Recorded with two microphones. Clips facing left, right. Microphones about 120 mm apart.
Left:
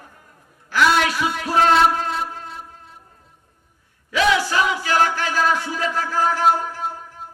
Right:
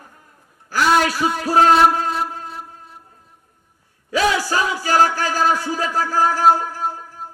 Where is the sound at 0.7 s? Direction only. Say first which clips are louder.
Right 1 dB; 40° right (ahead or behind).